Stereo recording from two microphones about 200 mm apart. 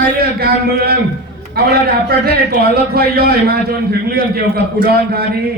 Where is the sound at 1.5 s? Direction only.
50° right (ahead or behind).